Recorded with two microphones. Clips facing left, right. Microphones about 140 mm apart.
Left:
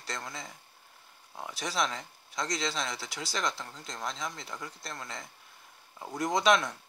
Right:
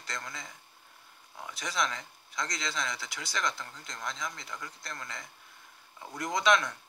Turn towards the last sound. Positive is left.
turn(degrees=30)  # may be behind; listen again after turning